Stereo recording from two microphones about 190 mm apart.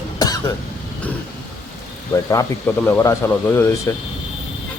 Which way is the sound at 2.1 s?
15° left (ahead or behind).